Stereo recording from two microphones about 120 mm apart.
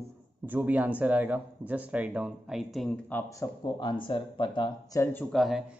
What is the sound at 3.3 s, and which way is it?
Speech, 35° left (ahead or behind).